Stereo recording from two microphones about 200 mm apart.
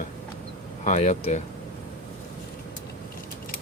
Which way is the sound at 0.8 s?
35° left (ahead or behind).